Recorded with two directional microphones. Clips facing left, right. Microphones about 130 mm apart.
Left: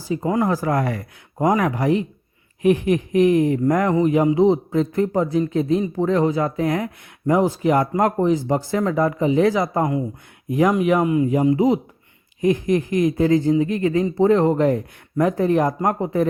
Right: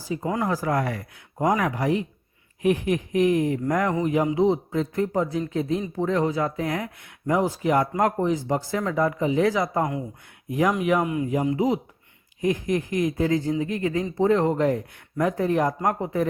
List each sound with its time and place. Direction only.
0.1 s speech: 30° left (ahead or behind)
3.2 s speech: 30° left (ahead or behind)
14.5 s speech: 45° left (ahead or behind)
15.2 s speech: 35° left (ahead or behind)